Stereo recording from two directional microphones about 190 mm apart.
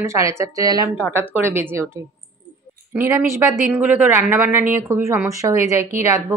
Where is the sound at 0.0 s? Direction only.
15° right (ahead or behind).